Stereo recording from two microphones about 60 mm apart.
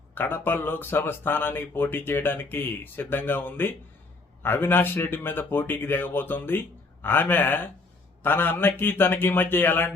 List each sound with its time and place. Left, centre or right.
0.1 s speech: left